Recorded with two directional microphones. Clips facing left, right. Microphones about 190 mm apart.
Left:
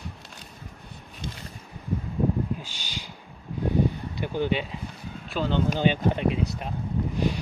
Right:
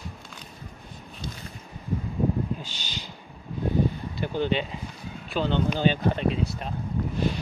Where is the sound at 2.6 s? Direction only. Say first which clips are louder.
Right 1 dB; 10° left (ahead or behind).